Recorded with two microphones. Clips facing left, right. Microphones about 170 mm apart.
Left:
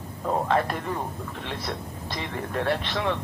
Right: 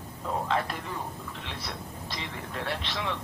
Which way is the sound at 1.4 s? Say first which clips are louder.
Left 8 dB; 50° left (ahead or behind).